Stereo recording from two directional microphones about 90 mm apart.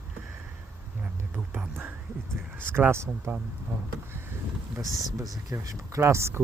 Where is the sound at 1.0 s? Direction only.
15° right (ahead or behind).